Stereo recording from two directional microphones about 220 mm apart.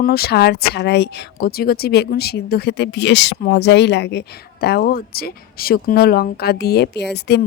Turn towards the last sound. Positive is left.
turn(degrees=50)  # may be behind; listen again after turning